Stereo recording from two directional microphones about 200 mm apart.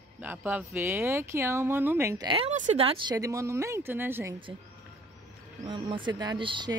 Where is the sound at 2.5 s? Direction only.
35° right (ahead or behind); by 4.3 s 10° right (ahead or behind).